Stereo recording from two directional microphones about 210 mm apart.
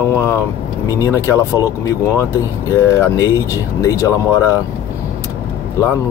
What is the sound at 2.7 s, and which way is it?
Speech, 15° left (ahead or behind).